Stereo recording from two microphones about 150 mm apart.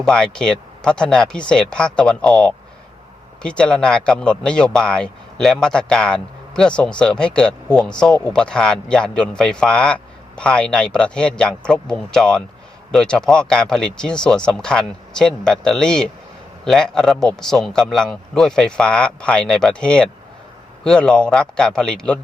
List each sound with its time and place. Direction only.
0.0 s speech: 5° left (ahead or behind)